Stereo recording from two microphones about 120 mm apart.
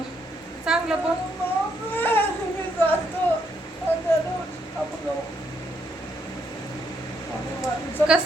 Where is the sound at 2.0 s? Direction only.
15° left (ahead or behind).